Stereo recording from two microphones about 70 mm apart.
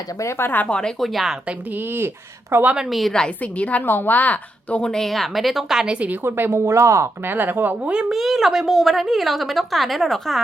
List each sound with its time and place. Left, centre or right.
0.2 s speech: left
0.7 s a woman's voice: centre
1.5 s speech: right
2.9 s a woman's voice: centre
3.4 s a woman's voice: left
4.8 s a woman's voice: centre
6.2 s speech: right
7.3 s speech: right
8.1 s a woman's voice: centre